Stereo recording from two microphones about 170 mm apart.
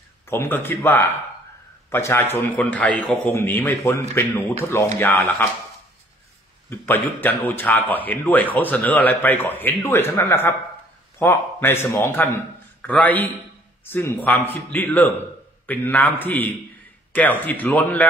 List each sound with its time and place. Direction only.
0.3 s speech: 15° left (ahead or behind)
6.7 s speech: 10° left (ahead or behind)